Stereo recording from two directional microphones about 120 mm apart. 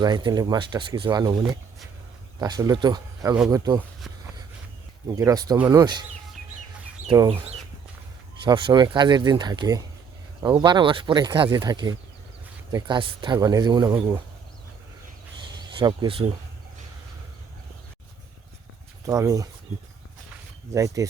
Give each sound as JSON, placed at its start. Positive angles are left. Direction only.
{"t": 0.0, "sound": "speech", "side_deg": -35}
{"t": 2.4, "sound": "speech", "side_deg": -30}
{"t": 5.0, "sound": "speech", "side_deg": -25}
{"t": 8.4, "sound": "speech", "side_deg": -40}
{"t": 15.4, "sound": "a sound", "side_deg": -40}
{"t": 19.0, "sound": "speech", "side_deg": -25}
{"t": 20.7, "sound": "speech", "side_deg": -25}